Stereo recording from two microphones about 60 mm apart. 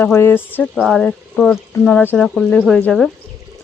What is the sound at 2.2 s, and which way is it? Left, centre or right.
Speech, centre.